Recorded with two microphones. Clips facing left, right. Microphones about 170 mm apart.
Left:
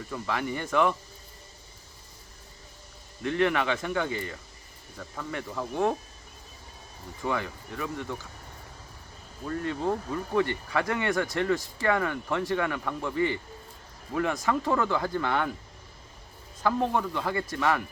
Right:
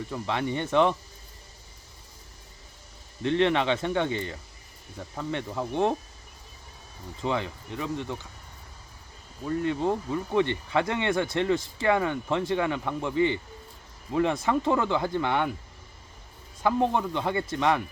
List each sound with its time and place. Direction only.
0.1 s speech: 25° right (ahead or behind)
3.2 s speech: 25° right (ahead or behind)
7.2 s speech: 20° right (ahead or behind)
9.5 s speech: 20° right (ahead or behind)
16.6 s speech: 20° right (ahead or behind)